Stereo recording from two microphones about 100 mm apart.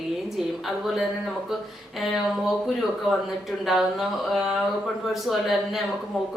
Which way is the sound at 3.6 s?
Centre (ahead or behind).